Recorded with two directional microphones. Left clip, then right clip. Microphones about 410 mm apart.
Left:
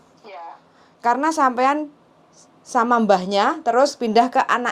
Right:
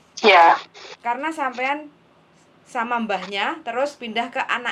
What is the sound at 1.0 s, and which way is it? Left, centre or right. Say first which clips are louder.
Speech: left 6 dB; left.